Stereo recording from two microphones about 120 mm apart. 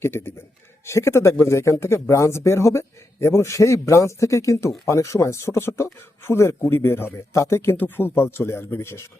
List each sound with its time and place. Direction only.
0.0 s speech: 20° left (ahead or behind)